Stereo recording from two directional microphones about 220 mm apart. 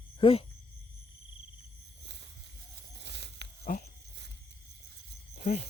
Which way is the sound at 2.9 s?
50° right (ahead or behind).